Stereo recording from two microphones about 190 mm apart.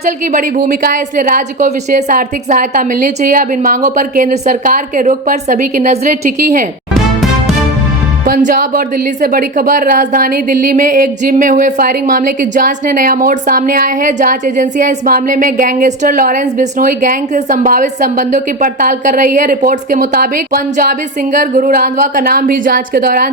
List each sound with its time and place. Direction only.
0.3 s a woman's voice: 45° right (ahead or behind)
8.2 s a woman's voice: 45° right (ahead or behind)